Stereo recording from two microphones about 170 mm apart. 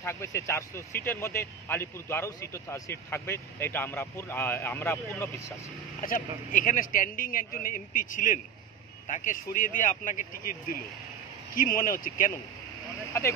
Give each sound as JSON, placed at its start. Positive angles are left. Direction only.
{"t": 0.0, "sound": "speech", "side_deg": 15}
{"t": 6.0, "sound": "a man's voice", "side_deg": 55}
{"t": 13.1, "sound": "speech", "side_deg": 15}